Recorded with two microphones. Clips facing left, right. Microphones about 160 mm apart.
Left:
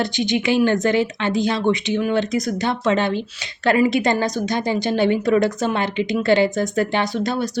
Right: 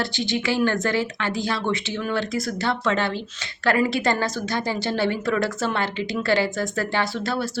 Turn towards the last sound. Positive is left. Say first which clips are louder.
# left 4 dB
turn(degrees=20)  # may be behind; listen again after turning